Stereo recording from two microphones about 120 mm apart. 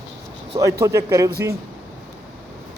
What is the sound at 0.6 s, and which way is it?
Speech, 25° right (ahead or behind).